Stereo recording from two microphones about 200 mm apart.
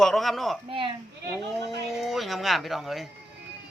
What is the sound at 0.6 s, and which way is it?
Speech, 25° right (ahead or behind).